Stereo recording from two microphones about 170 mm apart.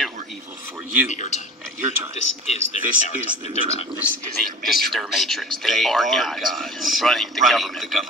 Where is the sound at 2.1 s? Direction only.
40° left (ahead or behind).